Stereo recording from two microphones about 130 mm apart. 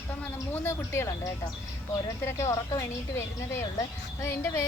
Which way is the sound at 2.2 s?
25° left (ahead or behind).